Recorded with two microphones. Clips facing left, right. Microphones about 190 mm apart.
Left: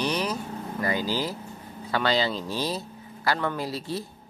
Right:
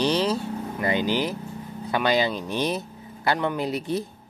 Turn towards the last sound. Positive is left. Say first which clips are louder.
# right 5 dB
turn(degrees=-20)  # may be behind; listen again after turning